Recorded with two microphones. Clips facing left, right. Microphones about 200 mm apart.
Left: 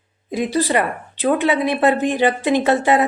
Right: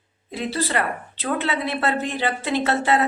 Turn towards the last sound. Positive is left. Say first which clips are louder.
# left 5 dB
turn(degrees=15)  # may be behind; listen again after turning